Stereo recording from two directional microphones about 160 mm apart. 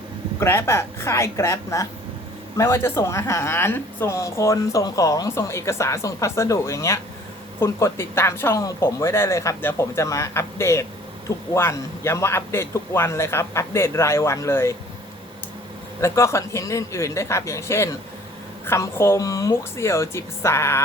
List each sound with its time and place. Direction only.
0.3 s speech: 15° left (ahead or behind)
16.0 s speech: 15° left (ahead or behind)